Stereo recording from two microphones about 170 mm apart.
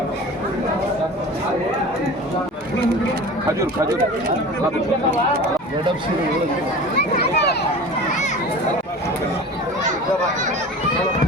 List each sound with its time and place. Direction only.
6.9 s speech: 70° left (ahead or behind)